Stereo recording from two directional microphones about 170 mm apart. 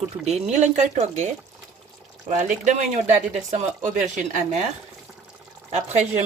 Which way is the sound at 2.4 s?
45° right (ahead or behind).